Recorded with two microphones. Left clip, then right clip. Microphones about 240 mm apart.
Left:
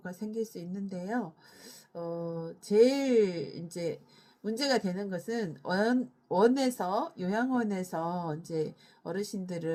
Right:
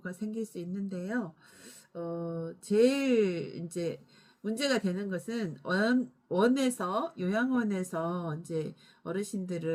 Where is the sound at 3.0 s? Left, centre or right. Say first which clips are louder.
Left 1 dB; centre.